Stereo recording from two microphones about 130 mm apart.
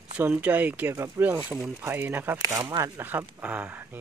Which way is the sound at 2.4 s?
25° right (ahead or behind).